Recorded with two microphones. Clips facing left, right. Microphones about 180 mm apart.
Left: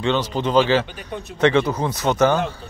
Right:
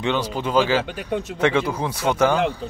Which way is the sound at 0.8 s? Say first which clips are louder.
Right 6 dB; 85° right.